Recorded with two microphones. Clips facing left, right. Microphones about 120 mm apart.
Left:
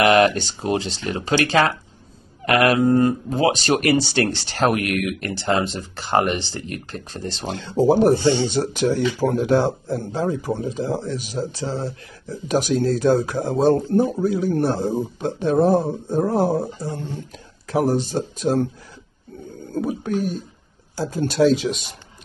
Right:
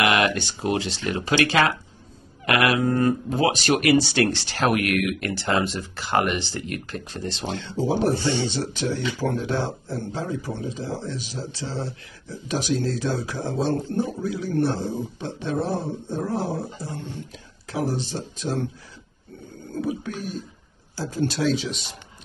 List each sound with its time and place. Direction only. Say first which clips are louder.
0.0 s speech: left 6 dB; 35° left (ahead or behind)
8.1 s speech: left 6 dB; 25° left (ahead or behind)
8.5 s speech: left 6 dB; 45° left (ahead or behind)
19.8 s speech: left 6 dB; 45° left (ahead or behind)